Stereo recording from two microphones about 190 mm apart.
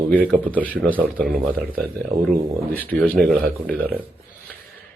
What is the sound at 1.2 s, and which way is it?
Speech, 50° right (ahead or behind).